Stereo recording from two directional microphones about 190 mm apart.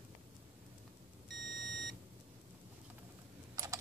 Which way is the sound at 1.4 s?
Centre (ahead or behind).